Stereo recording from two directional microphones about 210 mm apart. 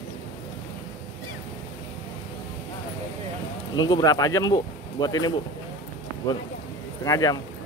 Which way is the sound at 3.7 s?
20° left (ahead or behind).